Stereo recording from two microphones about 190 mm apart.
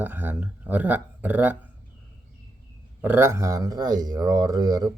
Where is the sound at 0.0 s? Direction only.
10° right (ahead or behind).